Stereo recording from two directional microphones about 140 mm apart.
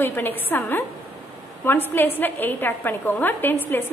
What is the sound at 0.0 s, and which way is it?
A woman's voice, 15° left (ahead or behind).